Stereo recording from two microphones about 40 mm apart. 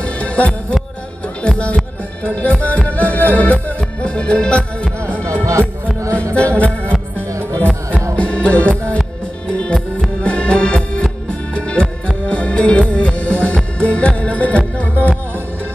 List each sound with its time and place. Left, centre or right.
0.0 s music: left
1.4 s speech: left
2.2 s music: left
3.6 s music: left